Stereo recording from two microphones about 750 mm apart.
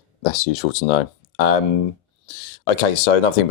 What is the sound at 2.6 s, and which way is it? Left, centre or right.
Speech, left.